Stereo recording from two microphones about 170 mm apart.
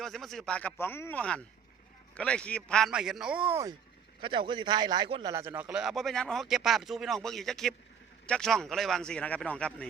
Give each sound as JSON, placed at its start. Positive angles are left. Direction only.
{"t": 0.0, "sound": "speech", "side_deg": 0}
{"t": 4.2, "sound": "a man's voice", "side_deg": -30}
{"t": 5.3, "sound": "speech", "side_deg": -15}